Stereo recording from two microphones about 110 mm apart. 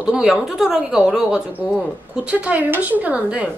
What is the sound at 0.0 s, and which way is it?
A woman's voice, 5° right (ahead or behind).